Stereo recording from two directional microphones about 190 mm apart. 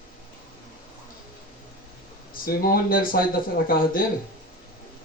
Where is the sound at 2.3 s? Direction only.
50° left (ahead or behind).